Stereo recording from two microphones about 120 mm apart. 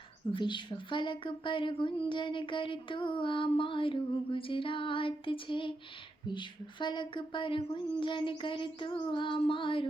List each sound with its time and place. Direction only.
0.3 s speech: 40° left (ahead or behind)